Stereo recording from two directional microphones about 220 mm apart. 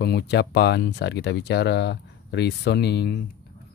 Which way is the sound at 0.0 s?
50° left (ahead or behind).